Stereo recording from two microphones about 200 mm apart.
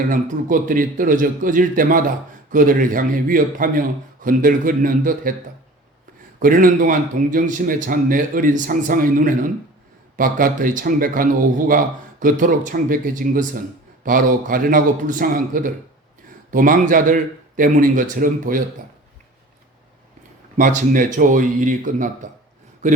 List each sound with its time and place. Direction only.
0.1 s a man's voice: 40° right (ahead or behind)
6.4 s a man's voice: 40° right (ahead or behind)
20.6 s a man's voice: 40° right (ahead or behind)